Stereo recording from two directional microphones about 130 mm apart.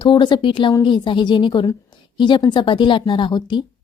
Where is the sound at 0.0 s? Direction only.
35° left (ahead or behind).